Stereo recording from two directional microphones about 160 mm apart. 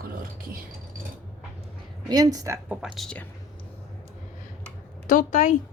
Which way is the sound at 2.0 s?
25° right (ahead or behind).